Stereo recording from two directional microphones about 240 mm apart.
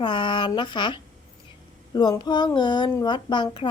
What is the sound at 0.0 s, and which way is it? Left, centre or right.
Speech, centre.